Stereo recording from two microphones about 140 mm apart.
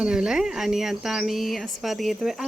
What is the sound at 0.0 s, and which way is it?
Speech, 5° right (ahead or behind).